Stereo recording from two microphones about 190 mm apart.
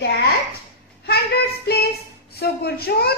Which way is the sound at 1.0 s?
55° left (ahead or behind).